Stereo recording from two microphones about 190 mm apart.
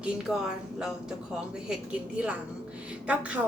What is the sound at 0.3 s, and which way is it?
Speech, centre (ahead or behind).